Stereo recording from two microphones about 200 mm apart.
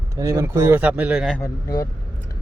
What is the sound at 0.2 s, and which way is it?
Speech, 15° right (ahead or behind).